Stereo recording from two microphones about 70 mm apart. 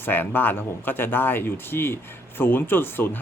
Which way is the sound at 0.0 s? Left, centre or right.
Left.